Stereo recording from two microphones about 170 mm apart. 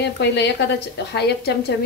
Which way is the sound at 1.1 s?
75° left (ahead or behind).